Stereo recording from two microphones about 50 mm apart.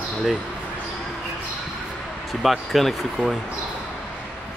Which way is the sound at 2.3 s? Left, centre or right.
Centre.